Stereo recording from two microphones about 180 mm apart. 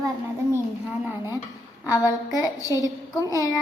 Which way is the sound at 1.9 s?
20° left (ahead or behind).